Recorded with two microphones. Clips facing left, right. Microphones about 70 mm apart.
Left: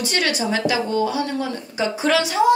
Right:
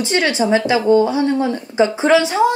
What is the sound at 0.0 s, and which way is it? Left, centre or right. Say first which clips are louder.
A woman's voice: right 5 dB; right.